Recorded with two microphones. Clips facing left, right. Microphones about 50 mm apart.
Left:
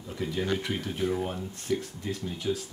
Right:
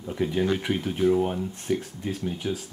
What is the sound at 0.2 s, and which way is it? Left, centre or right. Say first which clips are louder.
Speech: right 5 dB; right.